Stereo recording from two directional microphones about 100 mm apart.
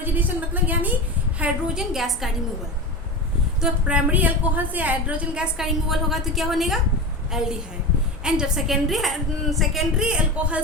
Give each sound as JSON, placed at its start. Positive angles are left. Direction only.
{"t": 0.0, "sound": "a woman's voice", "side_deg": -15}
{"t": 3.6, "sound": "a woman's voice", "side_deg": -10}